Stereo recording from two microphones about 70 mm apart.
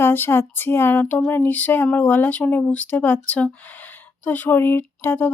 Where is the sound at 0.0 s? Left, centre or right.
Left.